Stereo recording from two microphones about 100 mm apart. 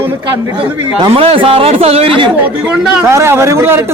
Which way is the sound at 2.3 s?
15° right (ahead or behind).